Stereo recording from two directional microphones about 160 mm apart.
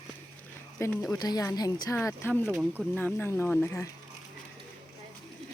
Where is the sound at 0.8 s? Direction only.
15° left (ahead or behind).